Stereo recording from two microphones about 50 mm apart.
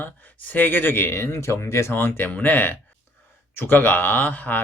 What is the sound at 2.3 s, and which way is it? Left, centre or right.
Speech, left.